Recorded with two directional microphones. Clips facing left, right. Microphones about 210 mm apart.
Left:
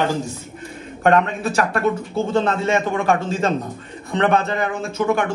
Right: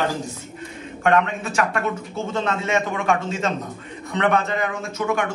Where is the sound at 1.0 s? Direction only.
35° left (ahead or behind).